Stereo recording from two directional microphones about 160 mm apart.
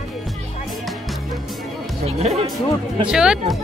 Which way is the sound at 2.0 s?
40° right (ahead or behind).